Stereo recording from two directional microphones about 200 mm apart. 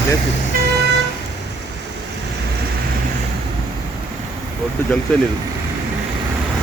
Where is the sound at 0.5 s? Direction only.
45° right (ahead or behind).